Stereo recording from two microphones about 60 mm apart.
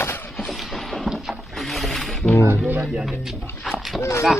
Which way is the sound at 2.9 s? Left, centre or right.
Centre.